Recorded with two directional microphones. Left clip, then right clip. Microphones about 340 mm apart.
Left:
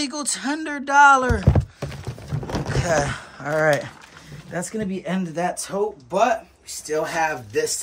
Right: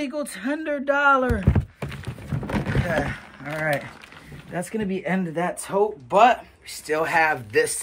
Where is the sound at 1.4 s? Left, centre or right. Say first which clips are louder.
Left 3 dB; left.